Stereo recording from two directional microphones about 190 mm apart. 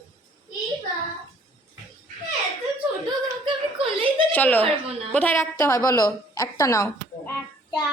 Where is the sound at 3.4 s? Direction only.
30° right (ahead or behind).